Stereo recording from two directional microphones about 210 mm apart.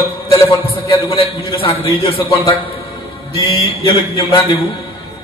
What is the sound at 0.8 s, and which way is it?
Speech, 25° left (ahead or behind).